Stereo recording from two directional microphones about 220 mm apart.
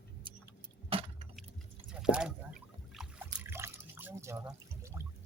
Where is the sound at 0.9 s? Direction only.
25° right (ahead or behind).